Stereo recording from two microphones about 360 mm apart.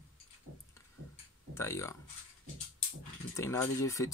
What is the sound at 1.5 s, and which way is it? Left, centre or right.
Speech, centre.